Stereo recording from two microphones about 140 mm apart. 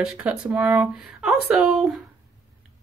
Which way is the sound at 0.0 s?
5° right (ahead or behind).